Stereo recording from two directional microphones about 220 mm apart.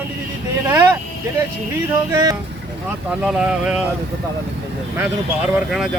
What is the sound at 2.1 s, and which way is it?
Speech, 15° right (ahead or behind).